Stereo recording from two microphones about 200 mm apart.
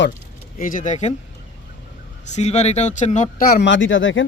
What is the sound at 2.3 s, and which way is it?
Speech, 35° left (ahead or behind).